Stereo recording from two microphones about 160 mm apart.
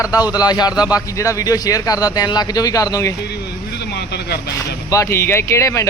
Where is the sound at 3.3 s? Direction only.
90° left.